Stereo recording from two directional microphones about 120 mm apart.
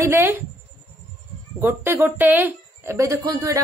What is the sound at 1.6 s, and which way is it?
A woman's voice, 20° right (ahead or behind).